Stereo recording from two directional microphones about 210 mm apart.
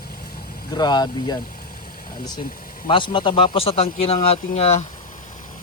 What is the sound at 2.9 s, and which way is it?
Speech, 25° left (ahead or behind).